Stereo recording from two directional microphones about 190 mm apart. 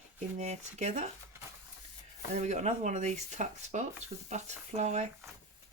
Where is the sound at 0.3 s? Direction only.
35° right (ahead or behind).